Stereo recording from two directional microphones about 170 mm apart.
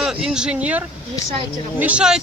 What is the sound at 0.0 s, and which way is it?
Speech, 5° right (ahead or behind).